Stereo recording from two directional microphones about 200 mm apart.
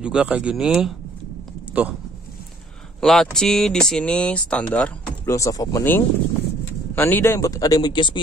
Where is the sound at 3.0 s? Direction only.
Centre (ahead or behind).